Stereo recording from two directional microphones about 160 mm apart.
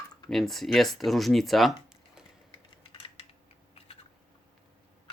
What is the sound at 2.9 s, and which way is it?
Typing, 35° left (ahead or behind).